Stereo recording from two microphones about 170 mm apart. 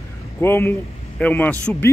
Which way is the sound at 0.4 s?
15° left (ahead or behind).